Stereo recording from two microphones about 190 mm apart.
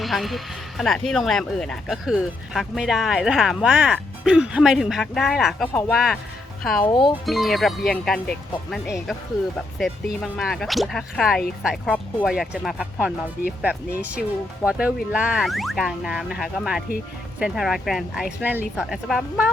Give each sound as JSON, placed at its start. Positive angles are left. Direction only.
{"t": 0.0, "sound": "speech", "side_deg": 0}
{"t": 6.8, "sound": "speech", "side_deg": 25}
{"t": 7.3, "sound": "speech", "side_deg": 0}